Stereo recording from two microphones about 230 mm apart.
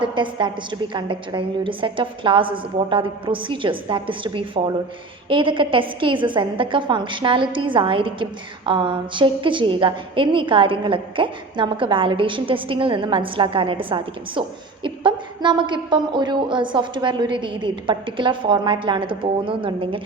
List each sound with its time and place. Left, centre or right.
0.0 s a woman's voice: right